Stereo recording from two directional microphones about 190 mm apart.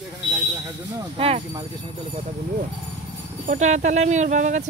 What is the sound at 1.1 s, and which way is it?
Speech, 30° right (ahead or behind).